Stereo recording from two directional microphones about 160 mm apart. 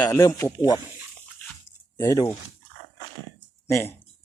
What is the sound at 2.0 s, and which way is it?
Speech, 20° left (ahead or behind).